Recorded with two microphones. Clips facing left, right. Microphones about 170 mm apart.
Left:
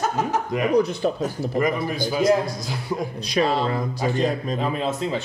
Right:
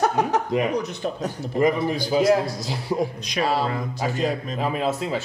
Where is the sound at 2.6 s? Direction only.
30° right (ahead or behind).